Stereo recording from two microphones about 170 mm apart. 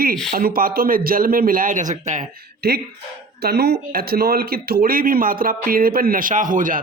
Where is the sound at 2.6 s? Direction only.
65° right (ahead or behind).